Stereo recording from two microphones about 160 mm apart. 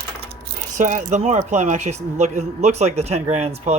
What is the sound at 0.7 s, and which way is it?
Speech, 55° right (ahead or behind).